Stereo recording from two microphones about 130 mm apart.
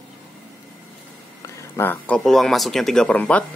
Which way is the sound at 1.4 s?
20° left (ahead or behind).